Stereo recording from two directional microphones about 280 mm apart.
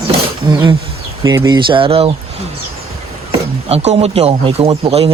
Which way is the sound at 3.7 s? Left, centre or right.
Right.